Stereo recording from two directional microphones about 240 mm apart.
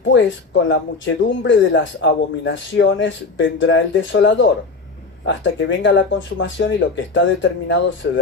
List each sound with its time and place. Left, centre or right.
0.1 s speech: left